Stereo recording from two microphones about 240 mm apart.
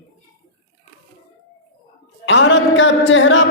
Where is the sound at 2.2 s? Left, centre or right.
Left.